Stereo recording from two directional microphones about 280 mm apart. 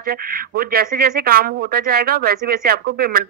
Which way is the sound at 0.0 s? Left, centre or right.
Right.